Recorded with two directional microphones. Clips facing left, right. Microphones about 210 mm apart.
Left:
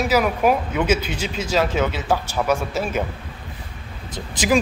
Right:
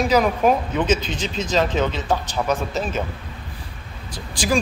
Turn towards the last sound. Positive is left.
turn(degrees=20)  # may be behind; listen again after turning